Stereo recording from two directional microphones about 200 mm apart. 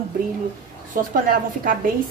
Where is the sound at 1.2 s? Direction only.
45° right (ahead or behind).